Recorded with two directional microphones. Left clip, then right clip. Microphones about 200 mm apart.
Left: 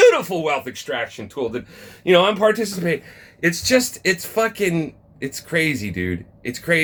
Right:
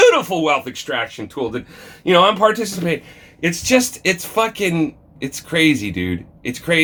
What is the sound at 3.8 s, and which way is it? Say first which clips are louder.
Speech: right 2 dB; 55° left (ahead or behind).